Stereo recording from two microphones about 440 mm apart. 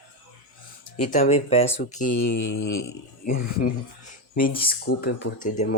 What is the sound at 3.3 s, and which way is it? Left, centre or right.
Speech, centre.